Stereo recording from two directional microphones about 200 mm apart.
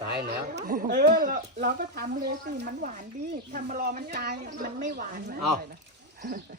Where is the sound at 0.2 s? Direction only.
50° right (ahead or behind).